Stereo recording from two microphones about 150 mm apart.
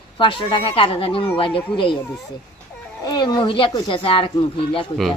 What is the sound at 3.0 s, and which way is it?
A woman's voice, 25° left (ahead or behind).